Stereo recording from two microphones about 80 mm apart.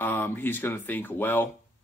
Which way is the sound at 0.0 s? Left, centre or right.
Left.